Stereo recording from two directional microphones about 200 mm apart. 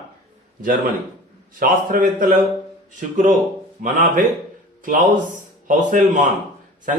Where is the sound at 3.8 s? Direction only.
40° right (ahead or behind).